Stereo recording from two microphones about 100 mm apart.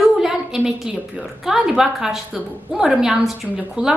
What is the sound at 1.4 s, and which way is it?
A woman's voice, 5° right (ahead or behind).